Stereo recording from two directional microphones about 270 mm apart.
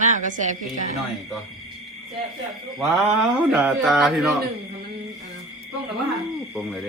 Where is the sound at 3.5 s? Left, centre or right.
Centre.